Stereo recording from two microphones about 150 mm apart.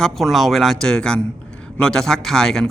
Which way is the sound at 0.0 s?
Centre (ahead or behind).